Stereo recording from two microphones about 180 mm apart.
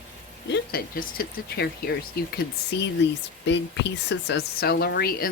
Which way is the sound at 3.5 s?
75° left (ahead or behind).